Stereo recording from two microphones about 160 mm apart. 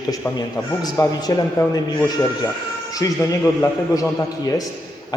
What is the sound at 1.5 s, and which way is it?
Speech, 25° left (ahead or behind).